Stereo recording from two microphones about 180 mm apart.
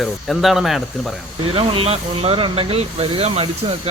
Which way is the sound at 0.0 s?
Centre (ahead or behind).